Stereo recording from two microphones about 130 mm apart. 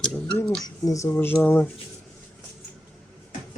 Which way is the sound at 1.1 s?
15° left (ahead or behind).